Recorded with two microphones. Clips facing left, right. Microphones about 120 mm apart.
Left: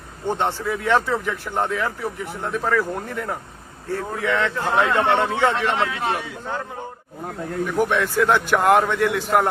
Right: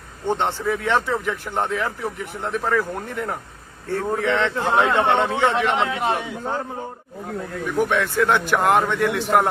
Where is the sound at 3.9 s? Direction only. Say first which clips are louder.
Right 2 dB; 25° right (ahead or behind).